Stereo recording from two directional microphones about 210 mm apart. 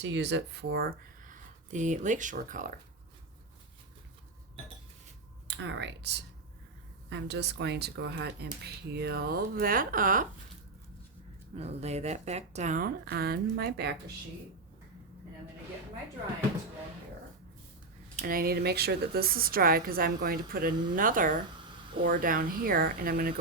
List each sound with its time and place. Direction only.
0.0 s speech: 55° right (ahead or behind); by 2.7 s 40° right (ahead or behind)
5.5 s speech: 60° right (ahead or behind); by 10.2 s 40° right (ahead or behind)
11.5 s speech: 30° right (ahead or behind); by 13.9 s 50° right (ahead or behind)
18.2 s speech: 40° right (ahead or behind)